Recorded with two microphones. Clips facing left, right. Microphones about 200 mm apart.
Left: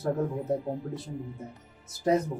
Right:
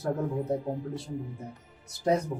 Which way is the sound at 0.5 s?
Centre (ahead or behind).